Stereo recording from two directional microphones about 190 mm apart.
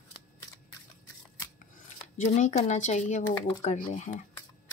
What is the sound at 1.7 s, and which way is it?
Speech, 40° left (ahead or behind).